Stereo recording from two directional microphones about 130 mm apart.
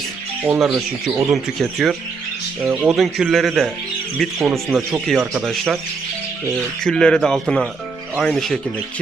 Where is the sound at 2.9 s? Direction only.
Centre (ahead or behind).